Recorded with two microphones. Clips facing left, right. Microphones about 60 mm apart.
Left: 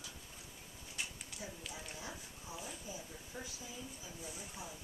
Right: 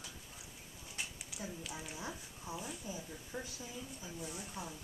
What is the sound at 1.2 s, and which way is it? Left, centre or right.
Dog, centre.